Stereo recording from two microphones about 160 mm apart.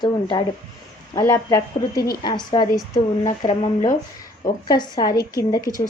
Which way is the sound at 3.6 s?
50° left (ahead or behind).